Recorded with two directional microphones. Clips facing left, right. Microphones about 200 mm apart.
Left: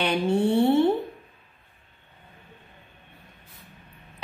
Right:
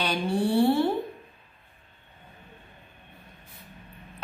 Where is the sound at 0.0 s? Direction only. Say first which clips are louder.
Left 4 dB; 25° left (ahead or behind).